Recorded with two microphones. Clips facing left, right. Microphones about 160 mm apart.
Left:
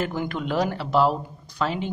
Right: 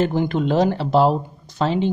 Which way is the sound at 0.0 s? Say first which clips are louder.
Right 8 dB; 30° right (ahead or behind).